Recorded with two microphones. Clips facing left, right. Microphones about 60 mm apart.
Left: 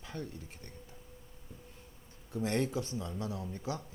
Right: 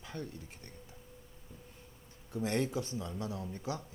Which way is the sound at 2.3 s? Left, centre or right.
Right.